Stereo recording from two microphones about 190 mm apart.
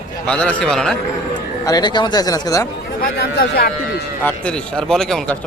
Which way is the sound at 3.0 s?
60° left (ahead or behind).